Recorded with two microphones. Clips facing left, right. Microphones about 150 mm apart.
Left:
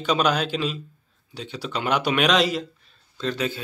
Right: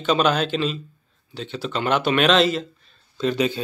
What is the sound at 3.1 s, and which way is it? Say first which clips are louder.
Speech: right 5 dB; 15° right (ahead or behind).